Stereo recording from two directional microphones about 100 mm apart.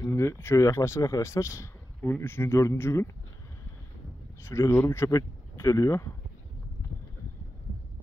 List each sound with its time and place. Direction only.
0.1 s speech: 25° left (ahead or behind)
4.4 s speech: 25° left (ahead or behind)